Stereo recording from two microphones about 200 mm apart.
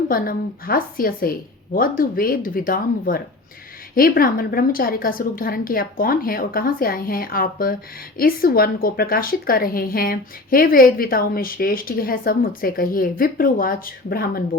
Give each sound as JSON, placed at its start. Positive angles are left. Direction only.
{"t": 0.1, "sound": "speech", "side_deg": 45}